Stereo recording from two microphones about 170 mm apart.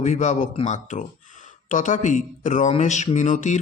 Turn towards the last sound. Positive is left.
turn(degrees=45)  # may be behind; listen again after turning